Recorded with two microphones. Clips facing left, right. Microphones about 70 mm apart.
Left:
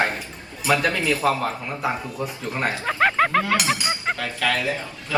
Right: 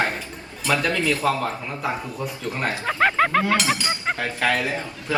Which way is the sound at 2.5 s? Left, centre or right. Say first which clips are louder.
Left 2 dB; centre.